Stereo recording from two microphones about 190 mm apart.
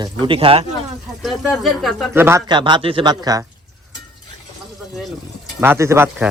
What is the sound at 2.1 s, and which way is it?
A man's voice, 10° right (ahead or behind).